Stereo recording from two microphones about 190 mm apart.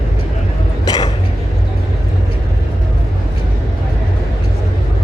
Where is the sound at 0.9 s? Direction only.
20° left (ahead or behind).